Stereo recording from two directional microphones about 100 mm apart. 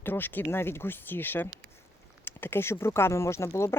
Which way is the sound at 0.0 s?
20° left (ahead or behind).